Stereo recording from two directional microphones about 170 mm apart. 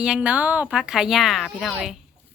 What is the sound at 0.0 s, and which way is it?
A woman's voice, 5° right (ahead or behind).